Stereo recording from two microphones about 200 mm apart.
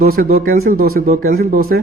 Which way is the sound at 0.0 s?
50° right (ahead or behind).